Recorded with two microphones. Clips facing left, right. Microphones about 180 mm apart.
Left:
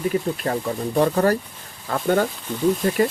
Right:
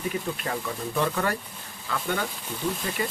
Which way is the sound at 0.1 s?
40° left (ahead or behind).